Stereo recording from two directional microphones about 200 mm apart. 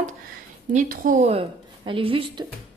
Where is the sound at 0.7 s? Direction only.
40° right (ahead or behind).